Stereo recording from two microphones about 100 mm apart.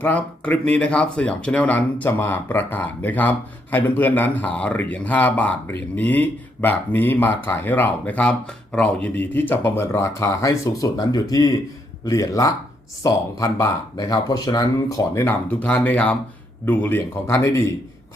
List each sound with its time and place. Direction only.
0.0 s speech: 15° left (ahead or behind)